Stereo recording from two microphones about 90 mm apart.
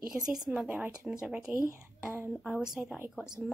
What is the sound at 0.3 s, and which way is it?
Speech, 10° right (ahead or behind).